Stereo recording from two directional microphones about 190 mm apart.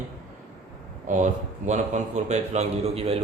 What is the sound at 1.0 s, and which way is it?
A man's voice, 40° right (ahead or behind).